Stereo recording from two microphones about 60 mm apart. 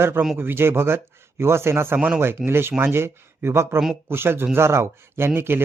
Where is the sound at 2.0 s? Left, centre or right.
Right.